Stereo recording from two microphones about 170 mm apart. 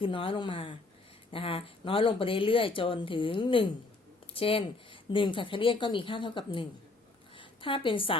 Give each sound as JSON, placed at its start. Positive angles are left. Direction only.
{"t": 0.0, "sound": "a woman's voice", "side_deg": 30}